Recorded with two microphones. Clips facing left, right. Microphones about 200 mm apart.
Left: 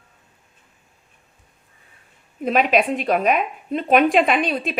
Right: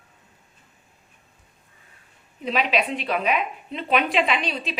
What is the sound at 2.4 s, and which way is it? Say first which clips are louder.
A woman's voice: left 6 dB; 50° left (ahead or behind).